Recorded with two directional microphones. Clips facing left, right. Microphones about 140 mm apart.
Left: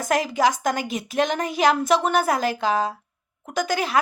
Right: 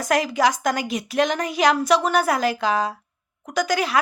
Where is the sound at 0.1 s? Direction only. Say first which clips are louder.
Right 1 dB; 45° left (ahead or behind).